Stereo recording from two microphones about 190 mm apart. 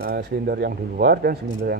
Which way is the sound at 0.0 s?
55° right (ahead or behind).